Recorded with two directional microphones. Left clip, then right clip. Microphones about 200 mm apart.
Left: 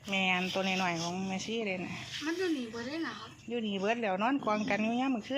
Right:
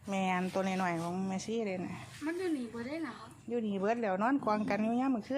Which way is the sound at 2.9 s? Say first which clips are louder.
Left 3 dB; 30° right (ahead or behind).